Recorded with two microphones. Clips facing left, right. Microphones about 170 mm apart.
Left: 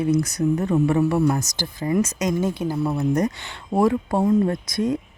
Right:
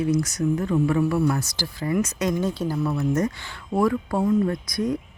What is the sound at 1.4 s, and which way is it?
Speech, 45° left (ahead or behind).